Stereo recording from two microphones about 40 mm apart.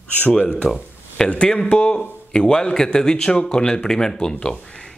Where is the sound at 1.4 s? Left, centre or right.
Left.